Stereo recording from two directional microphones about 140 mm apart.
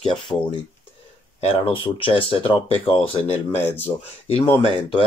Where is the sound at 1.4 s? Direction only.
40° left (ahead or behind).